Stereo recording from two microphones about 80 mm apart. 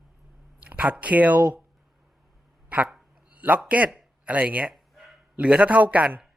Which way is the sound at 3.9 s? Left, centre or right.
Centre.